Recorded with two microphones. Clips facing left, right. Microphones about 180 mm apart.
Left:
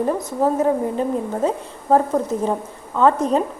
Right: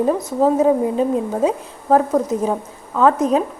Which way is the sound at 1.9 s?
5° right (ahead or behind).